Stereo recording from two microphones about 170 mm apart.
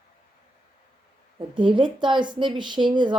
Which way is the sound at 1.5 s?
30° right (ahead or behind).